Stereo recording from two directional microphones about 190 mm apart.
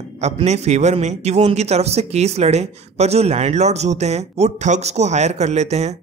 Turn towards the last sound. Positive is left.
turn(degrees=-35)  # may be behind; listen again after turning